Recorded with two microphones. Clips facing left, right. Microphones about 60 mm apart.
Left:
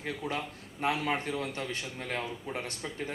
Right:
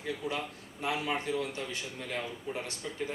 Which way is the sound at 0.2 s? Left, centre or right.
Left.